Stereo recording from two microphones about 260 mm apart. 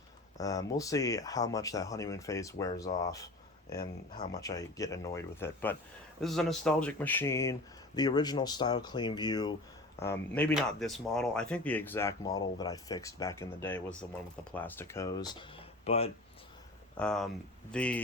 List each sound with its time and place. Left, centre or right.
0.3 s speech: centre
17.0 s speech: centre